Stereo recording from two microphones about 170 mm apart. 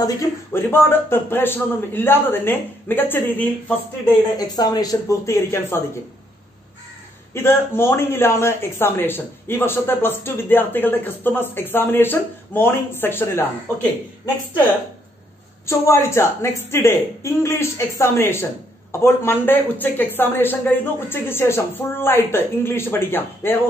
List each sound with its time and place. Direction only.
0.0 s a woman's voice: 15° left (ahead or behind)
4.4 s speech: 25° left (ahead or behind)
7.3 s a woman's voice: 15° left (ahead or behind)
15.6 s a woman's voice: 15° left (ahead or behind)